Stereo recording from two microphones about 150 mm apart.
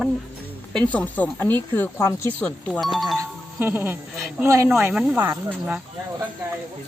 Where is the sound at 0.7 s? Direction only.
5° left (ahead or behind).